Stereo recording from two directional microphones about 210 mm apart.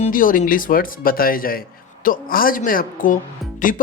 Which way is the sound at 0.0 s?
40° left (ahead or behind).